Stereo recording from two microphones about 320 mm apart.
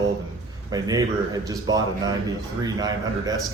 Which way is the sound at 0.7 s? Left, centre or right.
Centre.